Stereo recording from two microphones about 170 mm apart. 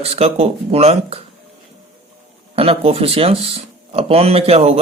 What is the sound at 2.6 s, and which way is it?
Speech, 35° right (ahead or behind).